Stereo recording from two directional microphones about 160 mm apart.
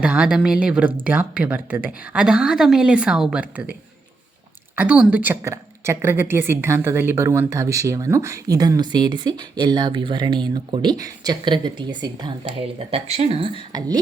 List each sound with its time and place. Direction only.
0.0 s a woman's voice: 5° right (ahead or behind)
4.7 s a woman's voice: 10° right (ahead or behind); by 12.3 s 30° right (ahead or behind)
12.9 s speech: 40° right (ahead or behind); by 14.0 s 25° right (ahead or behind)